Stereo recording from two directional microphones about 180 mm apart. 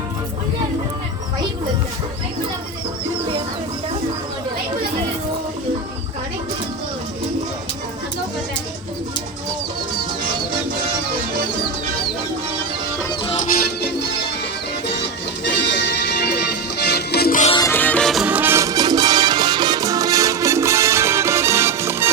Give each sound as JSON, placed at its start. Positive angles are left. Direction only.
{"t": 15.6, "sound": "music", "side_deg": 75}
{"t": 17.6, "sound": "music", "side_deg": 10}